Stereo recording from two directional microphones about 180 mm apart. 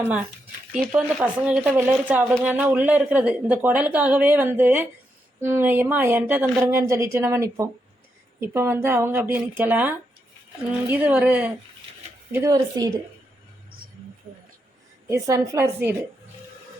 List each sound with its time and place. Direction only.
0.0 s speech: 10° right (ahead or behind)
12.3 s speech: 20° right (ahead or behind)
15.0 s speech: 15° right (ahead or behind)